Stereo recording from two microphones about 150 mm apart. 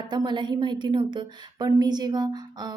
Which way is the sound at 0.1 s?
30° right (ahead or behind).